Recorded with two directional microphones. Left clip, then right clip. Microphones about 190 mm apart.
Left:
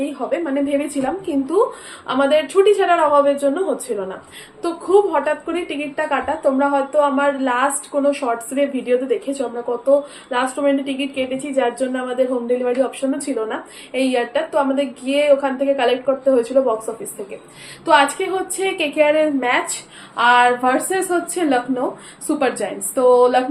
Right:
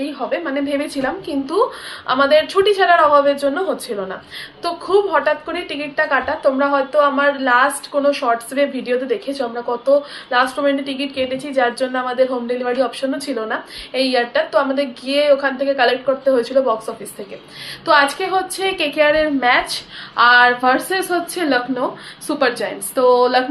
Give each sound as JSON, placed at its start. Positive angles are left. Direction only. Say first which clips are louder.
{"t": 0.0, "sound": "a woman's voice", "louder": "even", "side_deg": 10}
{"t": 18.2, "sound": "a woman's voice", "louder": "right 2 dB", "side_deg": 5}